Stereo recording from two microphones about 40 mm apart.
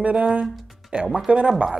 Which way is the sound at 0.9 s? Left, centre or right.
Right.